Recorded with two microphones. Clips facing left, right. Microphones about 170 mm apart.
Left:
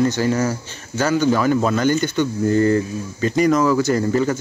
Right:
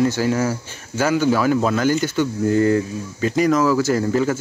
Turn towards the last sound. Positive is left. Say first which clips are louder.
# even
turn(degrees=-5)  # may be behind; listen again after turning